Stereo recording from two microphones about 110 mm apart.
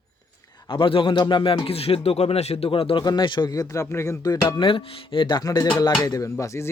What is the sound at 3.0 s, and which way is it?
Speech, 45° left (ahead or behind).